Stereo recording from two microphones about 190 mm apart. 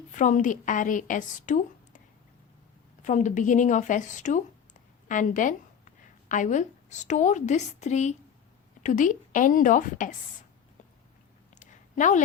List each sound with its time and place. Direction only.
0.1 s a woman's voice: 40° left (ahead or behind)
3.0 s a woman's voice: 40° left (ahead or behind)
11.5 s a sound: 40° left (ahead or behind)